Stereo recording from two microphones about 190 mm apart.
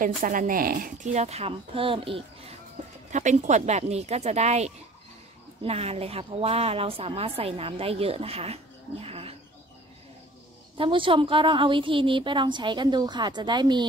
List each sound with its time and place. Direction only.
0.2 s a woman's voice: 45° right (ahead or behind); by 2.5 s 30° right (ahead or behind)
3.1 s a woman's voice: 40° right (ahead or behind)
10.8 s a woman's voice: 25° right (ahead or behind)